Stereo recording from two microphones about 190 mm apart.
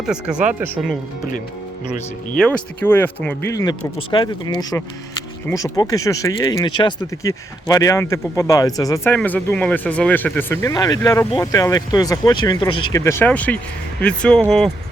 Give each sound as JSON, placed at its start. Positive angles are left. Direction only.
{"t": 0.0, "sound": "speech", "side_deg": -5}
{"t": 2.4, "sound": "speech", "side_deg": 10}
{"t": 12.9, "sound": "speech", "side_deg": 15}